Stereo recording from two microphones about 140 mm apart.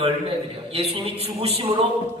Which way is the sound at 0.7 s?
45° right (ahead or behind).